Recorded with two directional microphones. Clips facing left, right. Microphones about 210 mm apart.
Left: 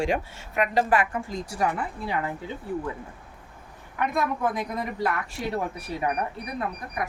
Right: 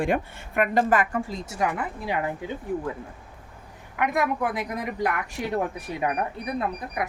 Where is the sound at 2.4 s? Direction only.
15° right (ahead or behind).